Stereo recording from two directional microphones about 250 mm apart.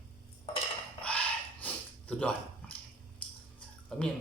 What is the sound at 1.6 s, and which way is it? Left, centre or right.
Dog, centre.